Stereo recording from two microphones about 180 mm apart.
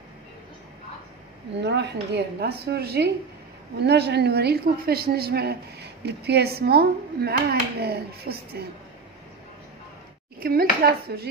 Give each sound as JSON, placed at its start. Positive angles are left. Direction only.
{"t": 1.6, "sound": "a woman's voice", "side_deg": -70}
{"t": 10.4, "sound": "a woman's voice", "side_deg": -55}